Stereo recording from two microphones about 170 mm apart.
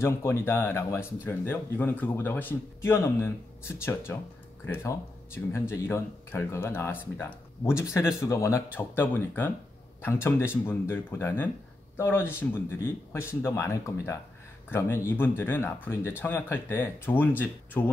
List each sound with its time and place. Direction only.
0.0 s speech: 15° left (ahead or behind)